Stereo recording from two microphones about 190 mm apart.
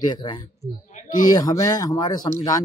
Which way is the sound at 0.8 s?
40° left (ahead or behind).